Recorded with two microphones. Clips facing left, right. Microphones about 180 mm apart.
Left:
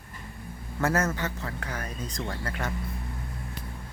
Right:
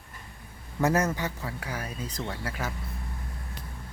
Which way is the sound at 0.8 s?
15° right (ahead or behind).